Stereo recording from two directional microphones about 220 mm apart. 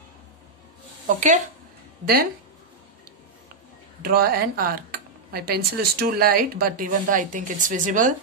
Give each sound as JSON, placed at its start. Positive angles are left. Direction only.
{"t": 1.0, "sound": "speech", "side_deg": -35}
{"t": 4.0, "sound": "speech", "side_deg": -45}